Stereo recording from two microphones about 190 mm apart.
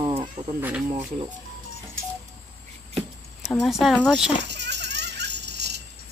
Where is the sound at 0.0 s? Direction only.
25° right (ahead or behind).